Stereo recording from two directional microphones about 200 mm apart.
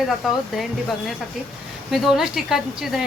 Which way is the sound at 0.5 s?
Centre (ahead or behind).